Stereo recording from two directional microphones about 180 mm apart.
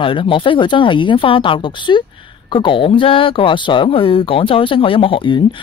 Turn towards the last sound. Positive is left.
turn(degrees=30)  # may be behind; listen again after turning